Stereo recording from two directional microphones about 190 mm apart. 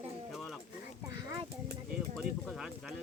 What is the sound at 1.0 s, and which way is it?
Speech, 15° right (ahead or behind).